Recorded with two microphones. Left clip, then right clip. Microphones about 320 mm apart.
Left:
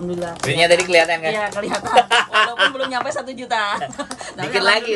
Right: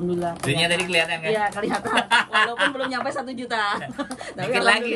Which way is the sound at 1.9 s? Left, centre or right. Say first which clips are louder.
Left 6 dB; centre.